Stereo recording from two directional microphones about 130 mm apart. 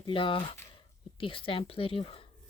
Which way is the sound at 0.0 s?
40° left (ahead or behind).